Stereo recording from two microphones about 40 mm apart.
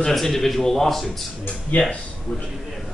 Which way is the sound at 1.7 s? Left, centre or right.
Left.